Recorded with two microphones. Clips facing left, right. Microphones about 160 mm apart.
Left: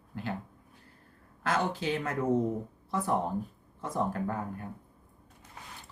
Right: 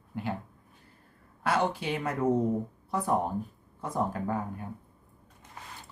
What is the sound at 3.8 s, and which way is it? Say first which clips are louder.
Speech: right 1 dB; 15° right (ahead or behind).